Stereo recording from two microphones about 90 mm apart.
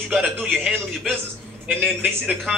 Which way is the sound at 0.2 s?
15° right (ahead or behind).